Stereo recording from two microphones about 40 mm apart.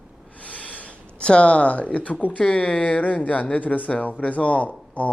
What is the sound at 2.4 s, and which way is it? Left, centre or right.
Speech, left.